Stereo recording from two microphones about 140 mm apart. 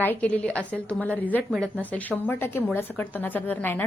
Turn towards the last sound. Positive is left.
turn(degrees=15)  # may be behind; listen again after turning